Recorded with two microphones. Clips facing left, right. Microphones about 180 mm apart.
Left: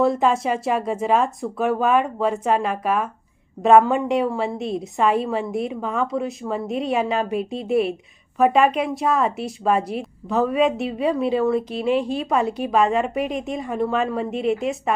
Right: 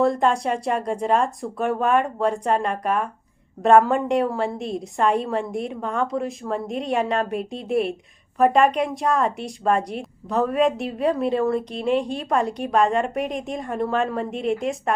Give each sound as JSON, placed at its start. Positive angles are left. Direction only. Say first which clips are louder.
{"t": 0.0, "sound": "speech", "louder": "left 1 dB", "side_deg": 0}